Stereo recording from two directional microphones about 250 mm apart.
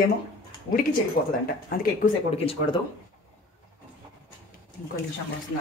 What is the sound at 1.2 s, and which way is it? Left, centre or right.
A woman's voice, left.